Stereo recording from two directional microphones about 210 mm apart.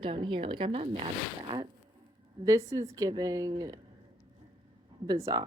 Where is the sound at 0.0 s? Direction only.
25° right (ahead or behind).